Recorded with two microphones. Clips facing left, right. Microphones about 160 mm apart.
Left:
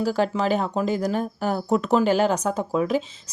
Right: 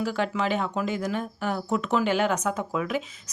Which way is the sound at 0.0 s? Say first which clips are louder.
Left 4 dB; 35° left (ahead or behind).